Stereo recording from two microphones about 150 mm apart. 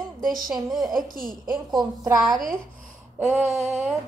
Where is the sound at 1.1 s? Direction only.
70° right (ahead or behind).